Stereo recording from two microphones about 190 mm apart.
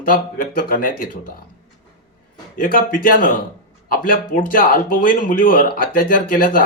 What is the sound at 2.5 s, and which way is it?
Speech, 45° left (ahead or behind).